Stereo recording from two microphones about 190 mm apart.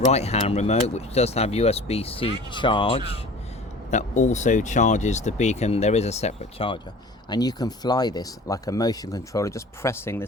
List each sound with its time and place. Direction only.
0.1 s speech: 35° left (ahead or behind)
3.9 s speech: 40° left (ahead or behind)
7.3 s speech: 20° left (ahead or behind)